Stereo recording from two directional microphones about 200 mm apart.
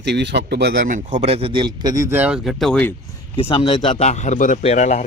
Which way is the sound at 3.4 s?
25° left (ahead or behind).